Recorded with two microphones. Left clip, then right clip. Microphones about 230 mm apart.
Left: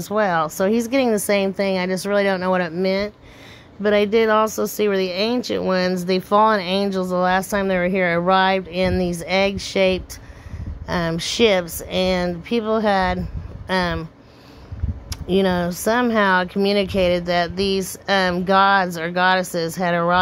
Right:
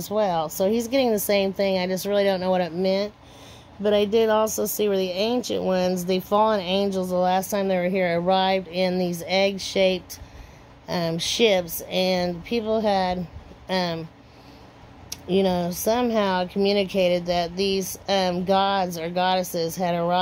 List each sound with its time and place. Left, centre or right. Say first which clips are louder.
0.0 s speech: left 4 dB; left
15.0 s speech: left 3 dB; left